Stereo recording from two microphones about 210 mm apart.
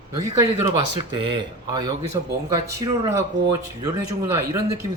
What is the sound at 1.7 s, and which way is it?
Speech, 20° right (ahead or behind).